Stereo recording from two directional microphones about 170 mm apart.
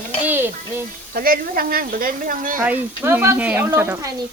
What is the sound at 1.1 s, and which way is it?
Speech, 60° right (ahead or behind).